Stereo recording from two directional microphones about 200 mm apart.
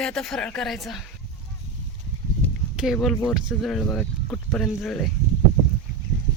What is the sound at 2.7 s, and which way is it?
Speech, centre (ahead or behind).